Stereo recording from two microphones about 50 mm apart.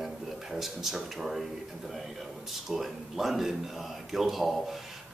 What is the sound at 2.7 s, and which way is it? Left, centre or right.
A man's voice, centre.